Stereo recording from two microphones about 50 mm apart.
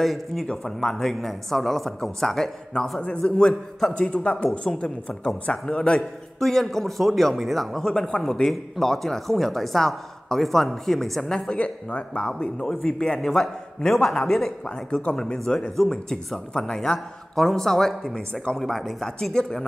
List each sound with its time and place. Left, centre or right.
0.0 s a man's voice: centre
5.9 s a man's voice: centre
11.5 s speech: left; by 14.5 s centre
14.9 s speech: left
18.3 s speech: centre
18.6 s a man's voice: centre